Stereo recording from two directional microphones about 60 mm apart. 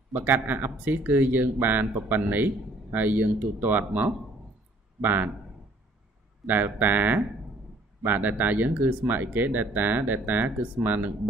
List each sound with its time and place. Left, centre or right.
0.1 s speech: right
6.4 s speech: right